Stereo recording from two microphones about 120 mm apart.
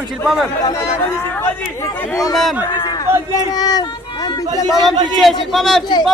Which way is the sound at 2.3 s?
Centre (ahead or behind).